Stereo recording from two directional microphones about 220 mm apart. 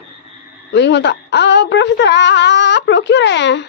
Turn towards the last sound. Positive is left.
turn(degrees=55)  # may be behind; listen again after turning